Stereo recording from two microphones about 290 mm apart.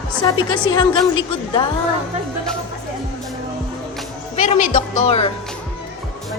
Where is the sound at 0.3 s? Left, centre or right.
Centre.